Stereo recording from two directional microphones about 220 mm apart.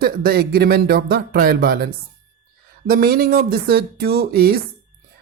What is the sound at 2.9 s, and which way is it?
Speech, 45° right (ahead or behind).